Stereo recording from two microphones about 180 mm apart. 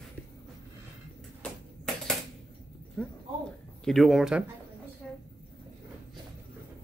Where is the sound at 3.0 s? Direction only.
Centre (ahead or behind).